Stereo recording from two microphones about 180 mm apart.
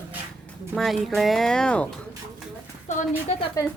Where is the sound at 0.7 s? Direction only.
Centre (ahead or behind).